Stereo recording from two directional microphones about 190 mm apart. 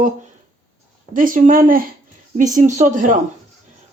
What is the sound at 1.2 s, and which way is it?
Speech, 45° right (ahead or behind).